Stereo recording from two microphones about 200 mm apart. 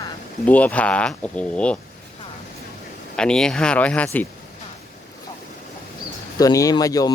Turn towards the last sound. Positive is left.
turn(degrees=20)  # may be behind; listen again after turning